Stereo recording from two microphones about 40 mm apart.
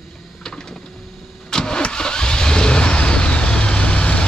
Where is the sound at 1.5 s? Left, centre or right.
Centre.